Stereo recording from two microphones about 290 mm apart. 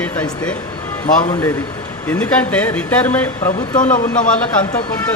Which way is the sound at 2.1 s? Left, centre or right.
Centre.